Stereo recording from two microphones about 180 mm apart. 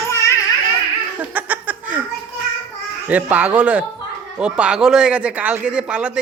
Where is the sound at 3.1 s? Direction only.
10° right (ahead or behind).